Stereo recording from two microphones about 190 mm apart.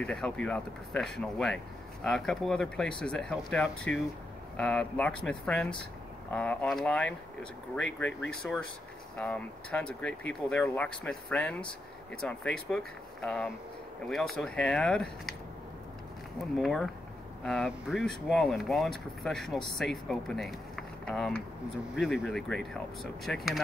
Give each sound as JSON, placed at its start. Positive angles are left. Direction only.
{"t": 0.0, "sound": "speech", "side_deg": 5}
{"t": 16.5, "sound": "speech", "side_deg": 0}